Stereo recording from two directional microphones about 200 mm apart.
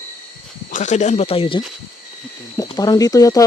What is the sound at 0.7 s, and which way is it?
Speech, 40° left (ahead or behind).